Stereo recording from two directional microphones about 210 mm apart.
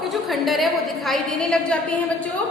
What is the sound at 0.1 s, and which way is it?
A woman's voice, centre (ahead or behind).